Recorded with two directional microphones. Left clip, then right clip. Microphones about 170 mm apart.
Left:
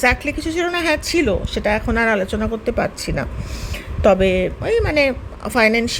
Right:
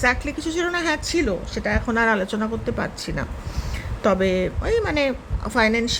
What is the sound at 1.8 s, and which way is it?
Speech, 15° left (ahead or behind).